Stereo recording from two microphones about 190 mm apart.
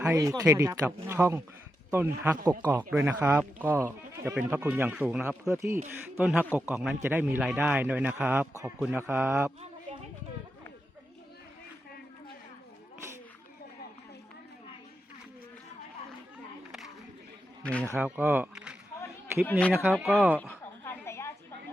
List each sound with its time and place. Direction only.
0.0 s a man's voice: 15° right (ahead or behind)
17.6 s speech: 5° left (ahead or behind)
17.9 s speech: 5° right (ahead or behind)
19.5 s speech: 5° left (ahead or behind)
20.5 s a sound: 10° left (ahead or behind)